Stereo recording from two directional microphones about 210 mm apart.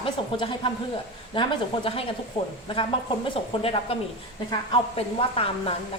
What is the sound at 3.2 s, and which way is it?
A woman's voice, 25° left (ahead or behind).